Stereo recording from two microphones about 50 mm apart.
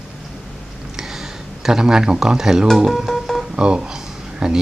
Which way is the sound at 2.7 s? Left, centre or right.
Centre.